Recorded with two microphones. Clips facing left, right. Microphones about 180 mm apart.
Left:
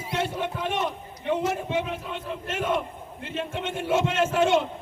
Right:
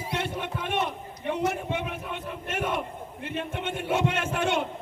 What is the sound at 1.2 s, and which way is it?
A man's voice, 60° right (ahead or behind).